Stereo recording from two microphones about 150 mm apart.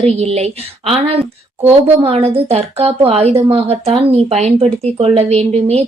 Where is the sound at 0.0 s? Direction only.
45° right (ahead or behind).